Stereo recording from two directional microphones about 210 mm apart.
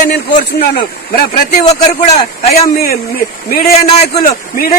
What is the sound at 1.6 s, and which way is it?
A man's voice, 25° left (ahead or behind).